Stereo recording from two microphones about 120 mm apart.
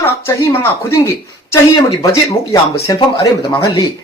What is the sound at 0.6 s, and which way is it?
Speech, 20° left (ahead or behind).